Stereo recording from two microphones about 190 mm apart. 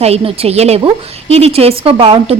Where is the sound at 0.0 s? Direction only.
30° right (ahead or behind).